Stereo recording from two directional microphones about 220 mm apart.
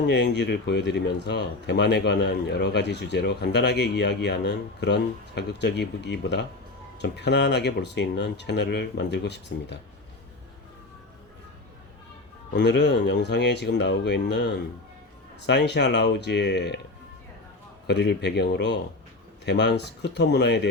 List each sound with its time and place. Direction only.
0.0 s speech: 50° left (ahead or behind)
12.5 s speech: 50° left (ahead or behind)
17.8 s speech: 50° left (ahead or behind)